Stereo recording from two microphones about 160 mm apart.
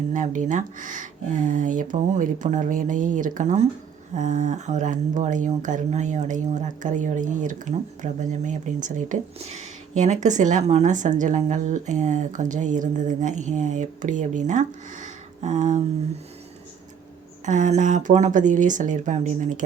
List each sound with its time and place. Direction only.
0.1 s speech: 50° right (ahead or behind)
17.4 s speech: 50° right (ahead or behind)